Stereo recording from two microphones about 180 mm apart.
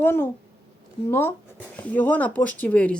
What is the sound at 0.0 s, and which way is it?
Speech, 15° left (ahead or behind).